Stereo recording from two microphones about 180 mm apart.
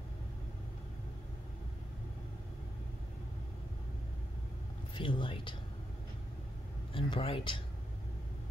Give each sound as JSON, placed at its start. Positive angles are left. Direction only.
{"t": 4.9, "sound": "speech", "side_deg": 25}
{"t": 6.9, "sound": "speech", "side_deg": 30}